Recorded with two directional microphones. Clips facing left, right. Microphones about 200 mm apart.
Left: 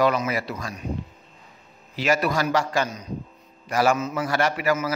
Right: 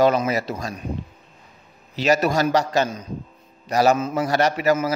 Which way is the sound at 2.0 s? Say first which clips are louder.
Right 3 dB; 45° right (ahead or behind).